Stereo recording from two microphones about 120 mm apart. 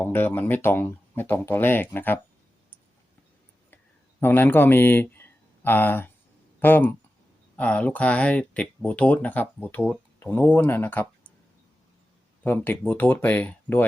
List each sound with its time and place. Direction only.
0.0 s speech: 15° left (ahead or behind)
4.2 s a man's voice: 15° left (ahead or behind)
12.4 s speech: 15° left (ahead or behind)